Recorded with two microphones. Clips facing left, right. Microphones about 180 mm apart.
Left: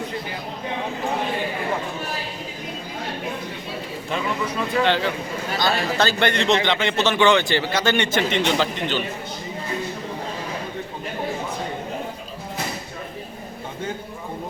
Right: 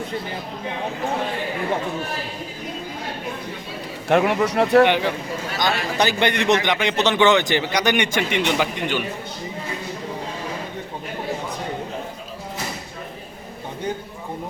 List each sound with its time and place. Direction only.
4.1 s speech: 65° right (ahead or behind)
5.5 s speech: 15° right (ahead or behind)